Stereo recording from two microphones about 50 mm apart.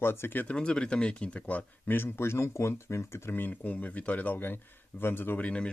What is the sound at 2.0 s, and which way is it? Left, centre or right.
Speech, left.